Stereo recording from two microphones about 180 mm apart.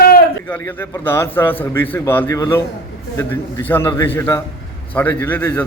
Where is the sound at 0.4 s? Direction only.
10° left (ahead or behind).